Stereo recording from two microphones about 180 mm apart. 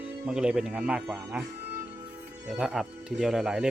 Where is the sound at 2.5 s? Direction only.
5° right (ahead or behind).